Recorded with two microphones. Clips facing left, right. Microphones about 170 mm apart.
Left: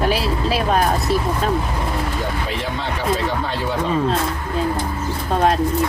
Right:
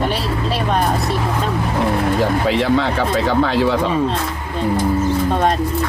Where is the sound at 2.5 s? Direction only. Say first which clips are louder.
Right 9 dB; 90° right.